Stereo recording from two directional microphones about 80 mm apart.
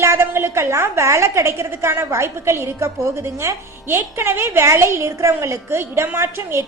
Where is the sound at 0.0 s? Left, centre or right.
Right.